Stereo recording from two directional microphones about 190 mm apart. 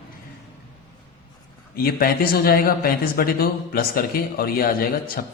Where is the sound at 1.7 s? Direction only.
50° left (ahead or behind).